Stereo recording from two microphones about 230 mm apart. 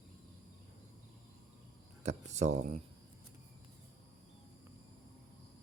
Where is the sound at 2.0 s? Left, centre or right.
Right.